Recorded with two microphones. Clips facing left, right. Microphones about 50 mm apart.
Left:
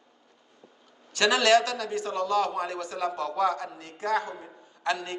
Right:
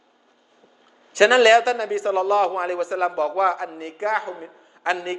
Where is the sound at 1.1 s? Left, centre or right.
Right.